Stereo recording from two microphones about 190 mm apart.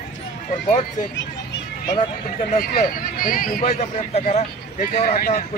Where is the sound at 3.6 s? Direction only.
35° left (ahead or behind).